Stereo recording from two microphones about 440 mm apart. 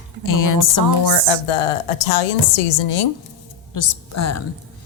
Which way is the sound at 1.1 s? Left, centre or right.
Left.